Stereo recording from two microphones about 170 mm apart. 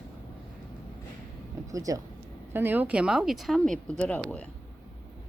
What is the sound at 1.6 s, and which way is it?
Speech, 20° right (ahead or behind).